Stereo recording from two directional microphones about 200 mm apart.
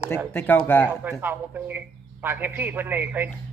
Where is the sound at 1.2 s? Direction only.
10° right (ahead or behind).